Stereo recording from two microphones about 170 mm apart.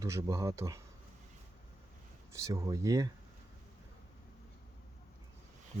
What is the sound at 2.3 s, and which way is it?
Speech, 20° right (ahead or behind).